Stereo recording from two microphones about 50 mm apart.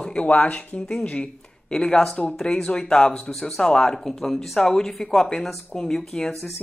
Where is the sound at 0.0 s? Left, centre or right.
Left.